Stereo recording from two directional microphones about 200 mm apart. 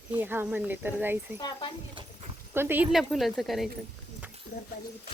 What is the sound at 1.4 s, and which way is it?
Speech, 20° left (ahead or behind).